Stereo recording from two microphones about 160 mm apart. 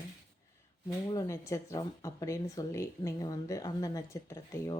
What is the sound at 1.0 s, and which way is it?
A woman's voice, 20° left (ahead or behind).